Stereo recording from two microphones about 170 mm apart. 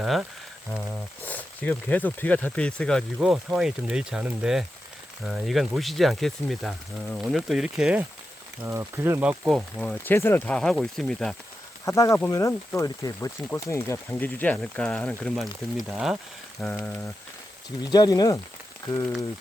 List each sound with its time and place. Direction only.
0.0 s speech: 5° right (ahead or behind)
1.2 s speech: 10° left (ahead or behind)
8.6 s speech: 15° right (ahead or behind)
9.7 s speech: 5° left (ahead or behind)
11.9 s speech: 20° left (ahead or behind); by 16.1 s 5° right (ahead or behind)
16.6 s speech: 5° left (ahead or behind)
17.9 s speech: 20° left (ahead or behind)